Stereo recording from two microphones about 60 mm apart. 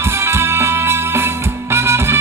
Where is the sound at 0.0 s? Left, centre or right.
Right.